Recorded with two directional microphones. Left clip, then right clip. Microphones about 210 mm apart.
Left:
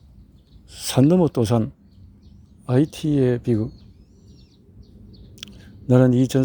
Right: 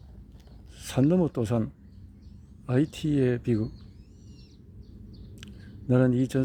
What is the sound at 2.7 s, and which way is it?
Speech, 15° left (ahead or behind).